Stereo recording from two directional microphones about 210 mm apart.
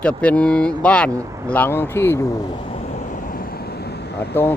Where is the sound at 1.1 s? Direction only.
15° right (ahead or behind).